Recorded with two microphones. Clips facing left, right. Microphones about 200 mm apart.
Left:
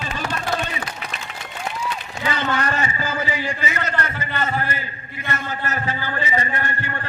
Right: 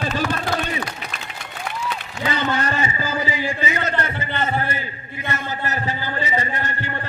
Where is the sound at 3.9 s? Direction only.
25° right (ahead or behind).